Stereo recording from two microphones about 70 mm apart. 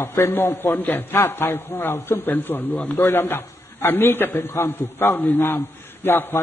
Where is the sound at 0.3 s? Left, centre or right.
Left.